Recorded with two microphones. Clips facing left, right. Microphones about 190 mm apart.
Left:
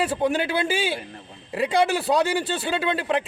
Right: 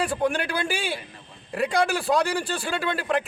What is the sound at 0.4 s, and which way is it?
Speech, 20° left (ahead or behind).